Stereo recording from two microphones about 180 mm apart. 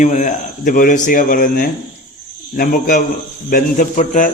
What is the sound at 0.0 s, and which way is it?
A man's voice, 45° left (ahead or behind).